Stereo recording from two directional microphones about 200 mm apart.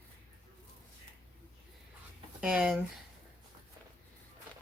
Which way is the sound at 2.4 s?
5° right (ahead or behind).